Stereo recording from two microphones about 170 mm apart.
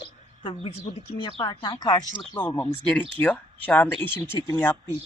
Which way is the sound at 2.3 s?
10° left (ahead or behind).